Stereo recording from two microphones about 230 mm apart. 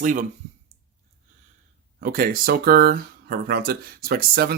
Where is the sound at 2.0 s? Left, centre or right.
Right.